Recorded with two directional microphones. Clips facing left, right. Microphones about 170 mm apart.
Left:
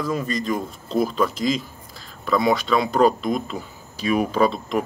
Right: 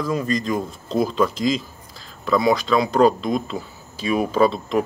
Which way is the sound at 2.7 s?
Centre (ahead or behind).